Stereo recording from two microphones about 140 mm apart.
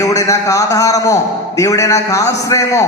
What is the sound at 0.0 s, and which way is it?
A man's voice, 25° left (ahead or behind).